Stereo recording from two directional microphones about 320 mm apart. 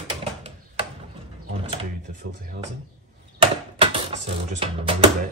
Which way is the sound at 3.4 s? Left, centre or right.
Centre.